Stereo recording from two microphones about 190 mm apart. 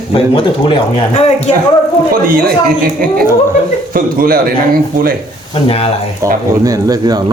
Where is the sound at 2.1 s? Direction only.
50° right (ahead or behind).